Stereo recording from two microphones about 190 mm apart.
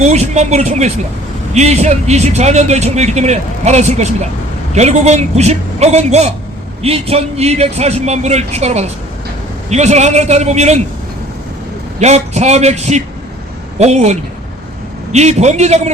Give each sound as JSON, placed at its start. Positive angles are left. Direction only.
{"t": 0.0, "sound": "a man's voice", "side_deg": -35}
{"t": 11.9, "sound": "a man's voice", "side_deg": -35}